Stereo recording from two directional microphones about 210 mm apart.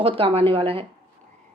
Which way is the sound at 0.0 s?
25° right (ahead or behind).